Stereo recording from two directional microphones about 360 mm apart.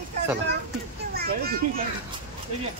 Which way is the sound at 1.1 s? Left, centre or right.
Right.